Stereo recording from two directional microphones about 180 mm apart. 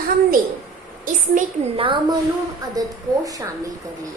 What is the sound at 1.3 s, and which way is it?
Speech, 45° right (ahead or behind).